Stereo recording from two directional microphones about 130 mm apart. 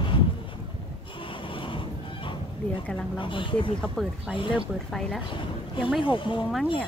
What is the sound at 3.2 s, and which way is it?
Speech, 40° left (ahead or behind).